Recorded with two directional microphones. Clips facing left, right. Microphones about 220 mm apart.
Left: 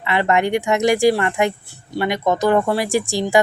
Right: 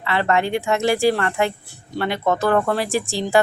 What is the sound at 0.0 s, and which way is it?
Speech, 15° left (ahead or behind).